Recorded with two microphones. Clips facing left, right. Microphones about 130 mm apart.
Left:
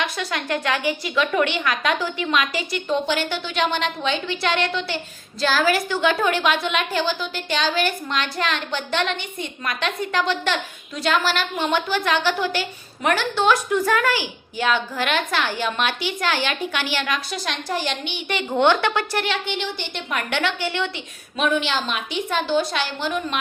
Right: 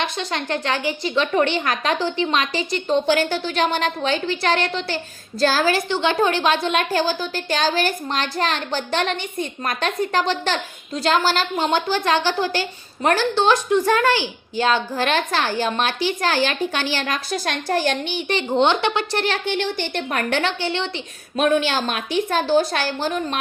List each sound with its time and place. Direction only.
0.0 s a woman's voice: 30° right (ahead or behind)
18.6 s a woman's voice: 20° right (ahead or behind)
19.1 s a woman's voice: 35° right (ahead or behind)
19.5 s a woman's voice: 50° right (ahead or behind); by 20.9 s 30° right (ahead or behind)
21.3 s a woman's voice: 45° right (ahead or behind)